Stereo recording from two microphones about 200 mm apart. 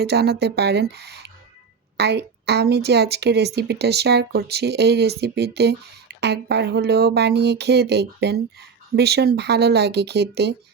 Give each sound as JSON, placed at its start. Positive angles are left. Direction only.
{"t": 0.0, "sound": "a woman's voice", "side_deg": -55}